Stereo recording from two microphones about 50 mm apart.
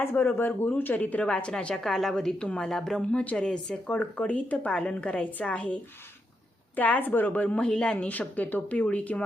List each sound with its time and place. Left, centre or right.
0.0 s speech: left
0.9 s speech: left
1.7 s a woman's voice: centre
2.1 s speech: centre
3.1 s speech: left
6.7 s speech: left
7.4 s speech: left
7.9 s speech: left